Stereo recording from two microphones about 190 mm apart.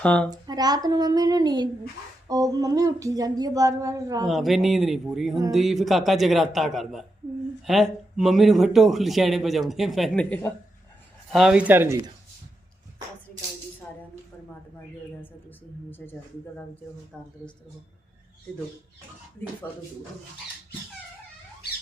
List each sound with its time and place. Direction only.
0.0 s speech: 5° left (ahead or behind)
0.3 s a sound: 20° right (ahead or behind)
4.3 s speech: centre (ahead or behind)
15.2 s a sound: 10° left (ahead or behind)
17.1 s speech: 5° left (ahead or behind)
19.6 s speech: 10° left (ahead or behind)